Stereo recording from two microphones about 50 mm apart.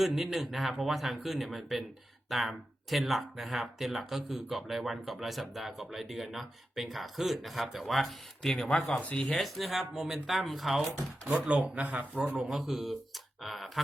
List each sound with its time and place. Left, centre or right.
0.0 s speech: centre
8.5 s speech: centre
9.0 s speech: left
9.3 s speech: centre
11.3 s speech: right
12.4 s speech: centre